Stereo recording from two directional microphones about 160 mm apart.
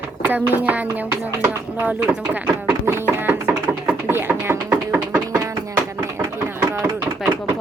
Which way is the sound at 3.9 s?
15° right (ahead or behind).